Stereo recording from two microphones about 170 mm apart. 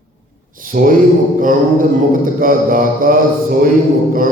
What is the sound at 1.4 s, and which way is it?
Mantra, 55° right (ahead or behind).